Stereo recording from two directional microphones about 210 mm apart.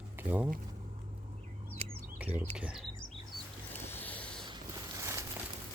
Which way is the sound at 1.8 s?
30° right (ahead or behind).